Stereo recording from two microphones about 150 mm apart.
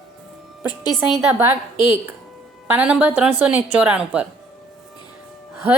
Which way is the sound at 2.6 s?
10° right (ahead or behind).